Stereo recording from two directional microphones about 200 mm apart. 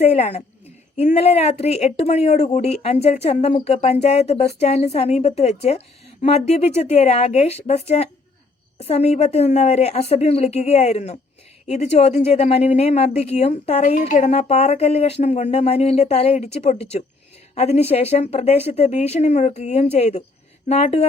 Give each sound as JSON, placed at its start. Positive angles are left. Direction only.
{"t": 0.0, "sound": "speech", "side_deg": 35}
{"t": 17.5, "sound": "speech", "side_deg": 35}